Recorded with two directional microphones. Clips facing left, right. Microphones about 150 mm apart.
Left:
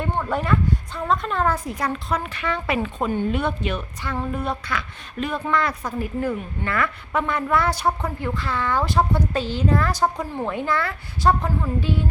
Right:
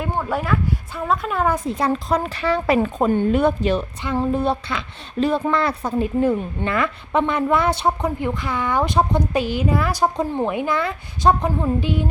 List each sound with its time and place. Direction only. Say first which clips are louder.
0.0 s speech: right 1 dB; 5° right (ahead or behind)
1.5 s speech: right 5 dB; 25° right (ahead or behind)